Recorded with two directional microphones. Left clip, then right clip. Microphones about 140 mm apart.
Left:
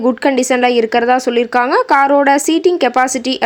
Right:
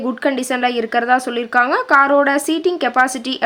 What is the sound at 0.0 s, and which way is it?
Speech, 30° left (ahead or behind).